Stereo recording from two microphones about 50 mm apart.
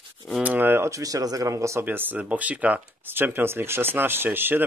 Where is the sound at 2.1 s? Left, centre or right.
Right.